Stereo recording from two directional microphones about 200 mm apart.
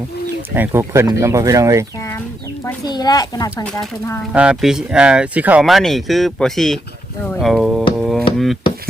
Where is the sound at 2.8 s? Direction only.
20° left (ahead or behind).